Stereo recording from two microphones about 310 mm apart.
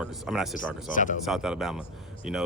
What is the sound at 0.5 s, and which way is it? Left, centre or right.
Speech, left.